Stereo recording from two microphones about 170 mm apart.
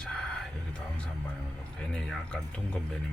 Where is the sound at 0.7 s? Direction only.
5° left (ahead or behind).